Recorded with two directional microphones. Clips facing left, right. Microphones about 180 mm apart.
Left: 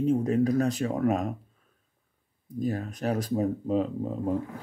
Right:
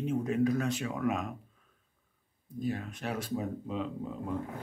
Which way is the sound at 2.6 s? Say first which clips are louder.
Left 5 dB; 40° left (ahead or behind).